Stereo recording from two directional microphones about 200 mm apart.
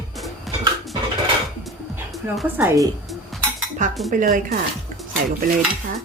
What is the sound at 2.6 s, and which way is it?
Speech, 15° right (ahead or behind).